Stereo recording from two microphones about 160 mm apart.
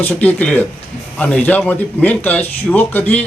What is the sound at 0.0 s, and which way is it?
A man's voice, 10° left (ahead or behind).